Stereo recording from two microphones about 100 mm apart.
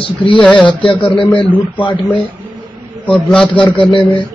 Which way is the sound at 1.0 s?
55° left (ahead or behind).